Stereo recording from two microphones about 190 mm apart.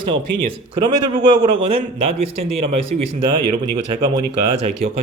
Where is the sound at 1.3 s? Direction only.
25° right (ahead or behind).